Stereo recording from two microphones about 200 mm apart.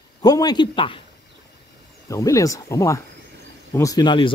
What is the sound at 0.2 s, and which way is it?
Speech, 20° left (ahead or behind).